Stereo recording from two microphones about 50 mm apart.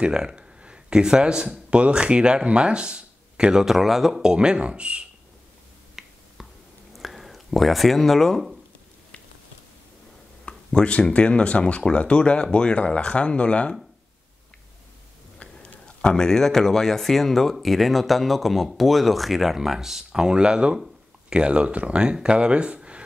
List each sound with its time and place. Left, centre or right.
0.0 s speech: centre
3.6 s speech: centre; by 5.0 s right
6.0 s finger snapping: centre
6.9 s a sound: centre
10.4 s speech: centre
15.3 s a sound: left
16.2 s speech: centre; by 23.0 s right